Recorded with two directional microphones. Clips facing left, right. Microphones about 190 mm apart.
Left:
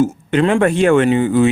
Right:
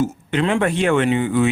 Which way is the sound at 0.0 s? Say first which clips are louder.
Left 5 dB; 50° left (ahead or behind).